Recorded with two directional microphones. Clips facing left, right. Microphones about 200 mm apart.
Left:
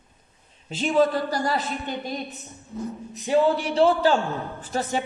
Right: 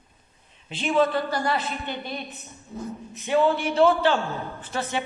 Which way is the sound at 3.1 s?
35° left (ahead or behind).